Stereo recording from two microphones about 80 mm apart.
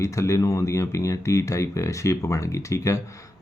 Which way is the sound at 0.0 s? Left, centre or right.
Left.